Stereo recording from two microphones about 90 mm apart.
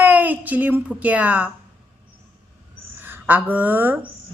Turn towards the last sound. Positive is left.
turn(degrees=-20)  # may be behind; listen again after turning